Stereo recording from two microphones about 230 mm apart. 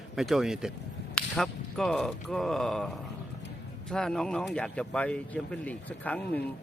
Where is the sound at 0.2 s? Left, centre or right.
Centre.